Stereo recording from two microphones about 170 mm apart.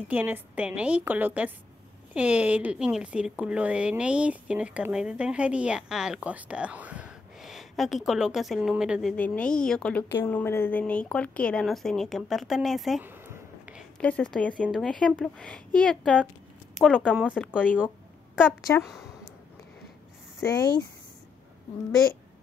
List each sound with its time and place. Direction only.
0.1 s a woman's voice: 10° right (ahead or behind)
9.1 s speech: 10° left (ahead or behind)
13.0 s a sound: 10° right (ahead or behind)
13.9 s speech: 5° left (ahead or behind)
17.7 s a sound: 5° right (ahead or behind)
20.3 s speech: 25° left (ahead or behind)